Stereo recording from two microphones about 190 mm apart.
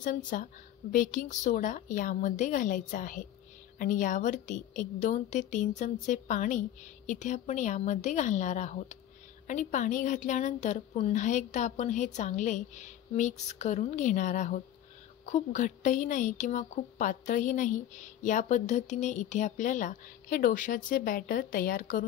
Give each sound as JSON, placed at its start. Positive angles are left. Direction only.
{"t": 0.0, "sound": "a woman's voice", "side_deg": 45}